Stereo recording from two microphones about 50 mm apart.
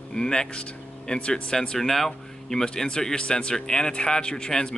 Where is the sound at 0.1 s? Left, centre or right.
Centre.